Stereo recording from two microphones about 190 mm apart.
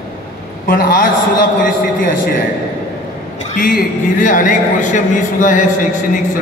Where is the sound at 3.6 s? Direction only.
45° left (ahead or behind).